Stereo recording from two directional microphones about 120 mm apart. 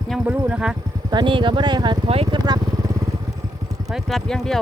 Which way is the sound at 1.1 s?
40° right (ahead or behind).